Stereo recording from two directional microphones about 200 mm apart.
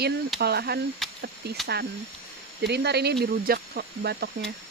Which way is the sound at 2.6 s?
55° right (ahead or behind).